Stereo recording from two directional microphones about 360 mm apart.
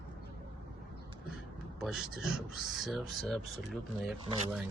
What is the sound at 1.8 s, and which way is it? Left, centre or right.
Speech, centre.